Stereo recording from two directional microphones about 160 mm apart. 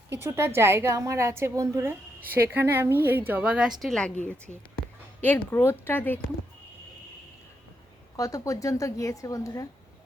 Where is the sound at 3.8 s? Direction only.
5° left (ahead or behind).